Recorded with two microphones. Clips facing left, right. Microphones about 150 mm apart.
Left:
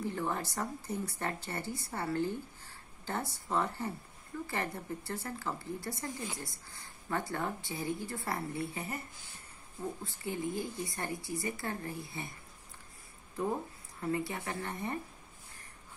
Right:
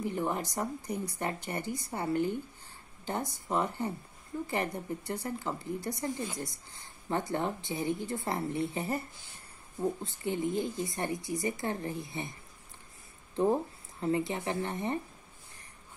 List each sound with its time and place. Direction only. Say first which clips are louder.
0.0 s a woman's voice: right 3 dB; 15° right (ahead or behind)
10.0 s a woman's voice: right 4 dB; 20° right (ahead or behind)
13.4 s a woman's voice: right 7 dB; 25° right (ahead or behind)